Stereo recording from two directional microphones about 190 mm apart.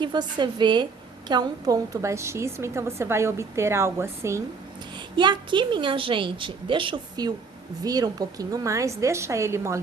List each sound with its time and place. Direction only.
0.0 s a woman's voice: 25° right (ahead or behind)
5.1 s a woman's voice: 25° right (ahead or behind)